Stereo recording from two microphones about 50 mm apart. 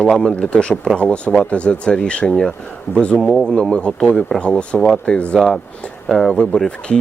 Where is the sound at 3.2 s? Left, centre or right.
Centre.